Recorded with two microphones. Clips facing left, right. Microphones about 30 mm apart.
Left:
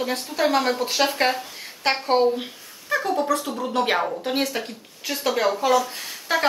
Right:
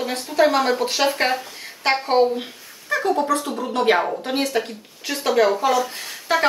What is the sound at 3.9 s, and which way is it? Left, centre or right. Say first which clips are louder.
Speech: right 3 dB; centre.